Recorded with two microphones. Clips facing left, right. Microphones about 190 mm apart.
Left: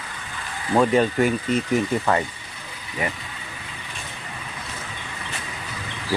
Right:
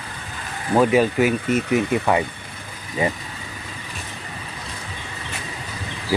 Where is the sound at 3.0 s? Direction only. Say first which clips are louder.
Right 5 dB; 25° right (ahead or behind).